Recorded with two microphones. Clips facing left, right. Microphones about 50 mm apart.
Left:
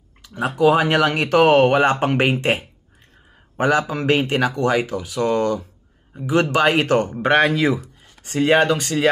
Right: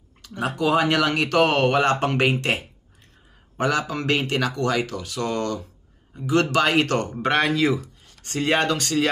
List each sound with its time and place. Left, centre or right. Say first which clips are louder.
0.2 s speech: left 7 dB; centre